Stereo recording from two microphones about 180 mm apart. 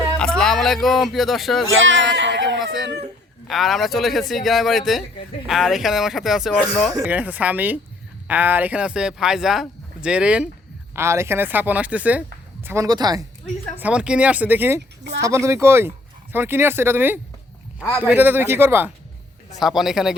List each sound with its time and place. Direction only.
0.2 s speech: 5° left (ahead or behind)
1.7 s speech: 90° right
3.4 s speech: centre (ahead or behind); by 13.2 s 20° right (ahead or behind)
13.7 s speech: 5° right (ahead or behind)
19.5 s speech: centre (ahead or behind)